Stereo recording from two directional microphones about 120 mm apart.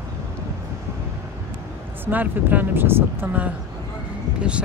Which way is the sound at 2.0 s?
15° right (ahead or behind).